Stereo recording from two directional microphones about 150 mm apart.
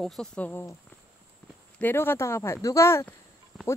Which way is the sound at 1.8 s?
15° left (ahead or behind).